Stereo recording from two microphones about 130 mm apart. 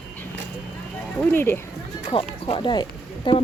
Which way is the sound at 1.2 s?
15° left (ahead or behind).